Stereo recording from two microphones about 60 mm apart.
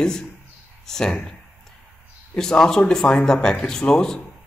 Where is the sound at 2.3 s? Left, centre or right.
Centre.